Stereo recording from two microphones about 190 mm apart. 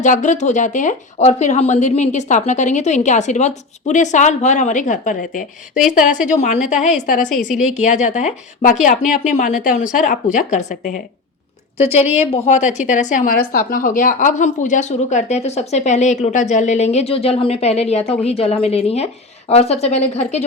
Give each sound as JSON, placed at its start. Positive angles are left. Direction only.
{"t": 0.0, "sound": "a woman's voice", "side_deg": 40}
{"t": 7.3, "sound": "a woman's voice", "side_deg": 0}
{"t": 7.7, "sound": "a woman's voice", "side_deg": 40}
{"t": 12.1, "sound": "a woman's voice", "side_deg": 35}